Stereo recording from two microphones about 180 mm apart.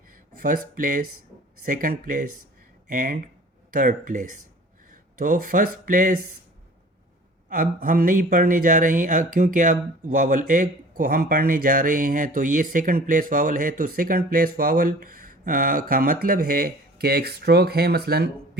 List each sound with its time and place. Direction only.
0.4 s speech: 50° right (ahead or behind)
7.5 s speech: 50° right (ahead or behind)